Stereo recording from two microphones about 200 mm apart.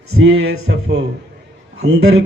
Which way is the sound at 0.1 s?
90° right.